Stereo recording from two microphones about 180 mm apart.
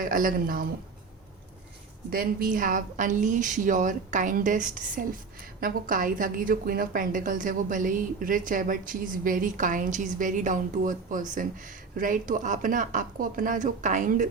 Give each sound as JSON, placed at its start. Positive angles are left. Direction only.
{"t": 0.0, "sound": "a woman's voice", "side_deg": -50}
{"t": 2.0, "sound": "a woman's voice", "side_deg": -50}